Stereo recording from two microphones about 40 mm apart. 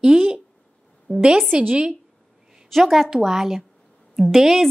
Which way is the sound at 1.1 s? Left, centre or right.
Right.